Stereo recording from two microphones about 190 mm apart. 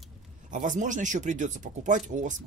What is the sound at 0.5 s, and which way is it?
Speech, 40° right (ahead or behind).